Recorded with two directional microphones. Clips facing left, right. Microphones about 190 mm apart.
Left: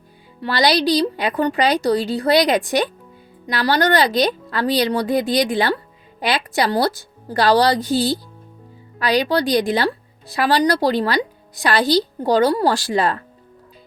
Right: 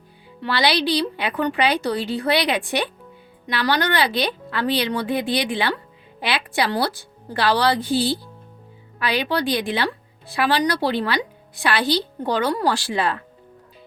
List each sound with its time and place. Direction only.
0.4 s speech: 40° left (ahead or behind)